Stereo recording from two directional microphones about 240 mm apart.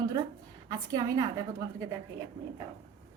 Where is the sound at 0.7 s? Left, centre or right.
Centre.